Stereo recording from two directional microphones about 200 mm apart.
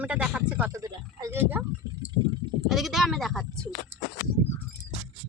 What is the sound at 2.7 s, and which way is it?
Speech, centre (ahead or behind).